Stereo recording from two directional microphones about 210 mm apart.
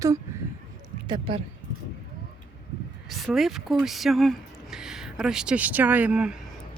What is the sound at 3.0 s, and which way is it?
Speech, centre (ahead or behind).